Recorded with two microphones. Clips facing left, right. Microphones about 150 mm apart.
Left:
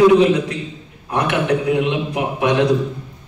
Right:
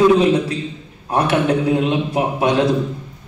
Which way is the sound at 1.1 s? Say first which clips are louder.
Right 2 dB; 30° right (ahead or behind).